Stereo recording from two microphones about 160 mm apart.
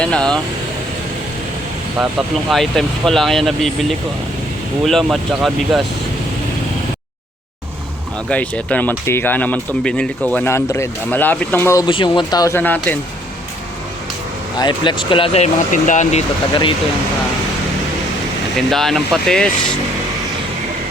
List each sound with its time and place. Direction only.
0.0 s speech: 5° left (ahead or behind)
2.0 s speech: centre (ahead or behind)
8.3 s speech: 10° left (ahead or behind)
11.9 s speech: 30° left (ahead or behind)
12.5 s speech: 10° left (ahead or behind)
14.6 s speech: 30° left (ahead or behind); by 16.2 s 50° left (ahead or behind)
18.5 s speech: centre (ahead or behind)